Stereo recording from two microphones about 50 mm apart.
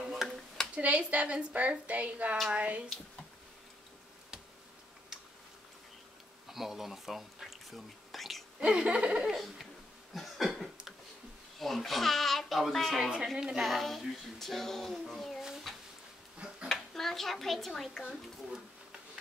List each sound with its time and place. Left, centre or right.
0.7 s a woman's voice: right
6.5 s whispering: centre
8.5 s a woman's voice: centre
9.2 s speech: centre
10.1 s cough: centre
11.5 s speech: centre
13.0 s a woman's voice: centre
15.4 s a sound: centre
16.3 s a sound: right
16.9 s a woman's voice: centre